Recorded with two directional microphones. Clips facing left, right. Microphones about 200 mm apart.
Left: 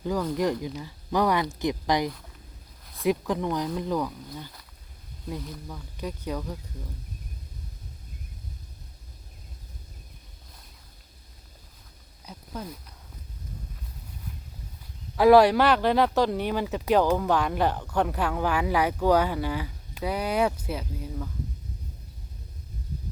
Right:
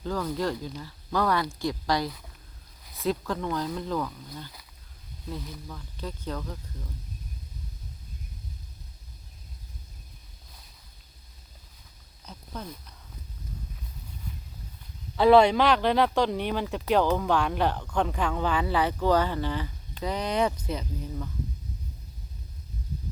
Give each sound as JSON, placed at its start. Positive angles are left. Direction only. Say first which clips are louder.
{"t": 0.0, "sound": "speech", "louder": "left 3 dB", "side_deg": 10}
{"t": 5.6, "sound": "speech", "louder": "left 3 dB", "side_deg": 10}
{"t": 12.2, "sound": "a sound", "louder": "left 2 dB", "side_deg": 10}
{"t": 15.1, "sound": "speech", "louder": "left 2 dB", "side_deg": 5}